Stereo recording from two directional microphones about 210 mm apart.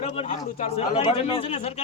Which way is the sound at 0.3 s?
30° left (ahead or behind).